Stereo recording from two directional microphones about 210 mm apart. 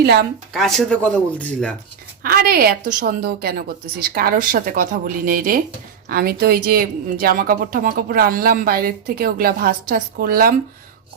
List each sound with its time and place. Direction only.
0.0 s a woman's voice: 50° right (ahead or behind)
0.5 s speech: centre (ahead or behind)
2.2 s a woman's voice: 45° right (ahead or behind)